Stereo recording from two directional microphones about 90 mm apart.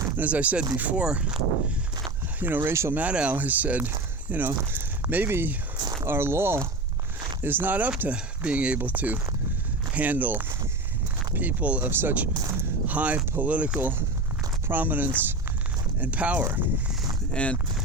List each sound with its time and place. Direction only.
0.2 s speech: 15° right (ahead or behind)
2.4 s speech: 20° right (ahead or behind)
2.9 s speech: 15° right (ahead or behind)
17.3 s speech: 15° left (ahead or behind)